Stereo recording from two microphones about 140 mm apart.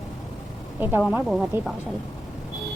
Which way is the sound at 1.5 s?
20° right (ahead or behind).